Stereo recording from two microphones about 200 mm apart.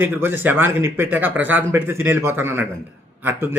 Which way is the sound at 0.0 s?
10° right (ahead or behind).